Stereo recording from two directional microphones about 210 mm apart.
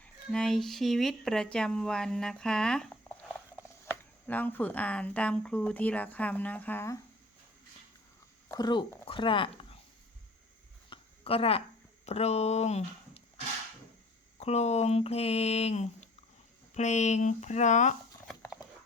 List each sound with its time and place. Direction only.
0.0 s speech: 5° left (ahead or behind)
8.5 s speech: 20° left (ahead or behind)
10.8 s a sound: 25° left (ahead or behind)
12.0 s speech: 30° left (ahead or behind)
14.4 s speech: 30° left (ahead or behind)